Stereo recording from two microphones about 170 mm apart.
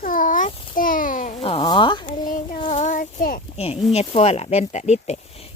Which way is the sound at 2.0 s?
50° left (ahead or behind).